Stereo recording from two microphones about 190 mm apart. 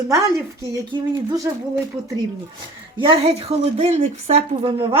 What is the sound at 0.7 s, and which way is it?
Speech, 20° right (ahead or behind).